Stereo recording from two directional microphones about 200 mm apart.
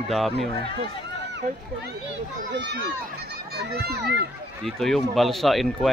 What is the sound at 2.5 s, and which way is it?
A child's voice, 60° right (ahead or behind).